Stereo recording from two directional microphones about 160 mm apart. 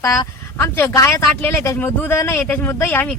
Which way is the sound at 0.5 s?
15° left (ahead or behind).